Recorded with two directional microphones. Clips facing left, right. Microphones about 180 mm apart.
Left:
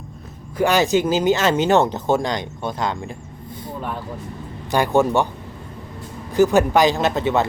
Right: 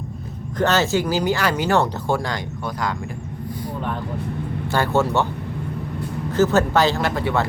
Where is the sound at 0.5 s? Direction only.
10° left (ahead or behind).